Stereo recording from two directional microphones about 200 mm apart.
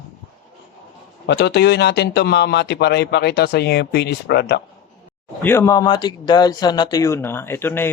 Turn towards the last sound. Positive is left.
turn(degrees=10)  # may be behind; listen again after turning